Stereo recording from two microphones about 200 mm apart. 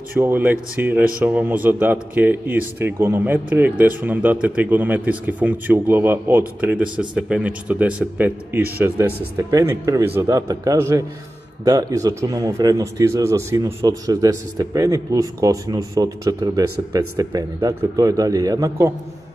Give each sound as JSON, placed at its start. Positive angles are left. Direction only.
{"t": 0.2, "sound": "speech", "side_deg": -10}